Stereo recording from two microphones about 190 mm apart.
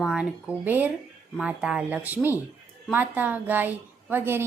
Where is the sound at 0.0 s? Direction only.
5° right (ahead or behind).